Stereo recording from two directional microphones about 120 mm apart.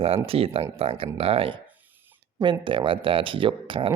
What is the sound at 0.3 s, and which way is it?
Speech, 50° right (ahead or behind).